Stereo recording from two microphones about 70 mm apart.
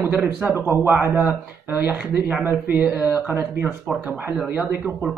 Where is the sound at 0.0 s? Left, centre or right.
Right.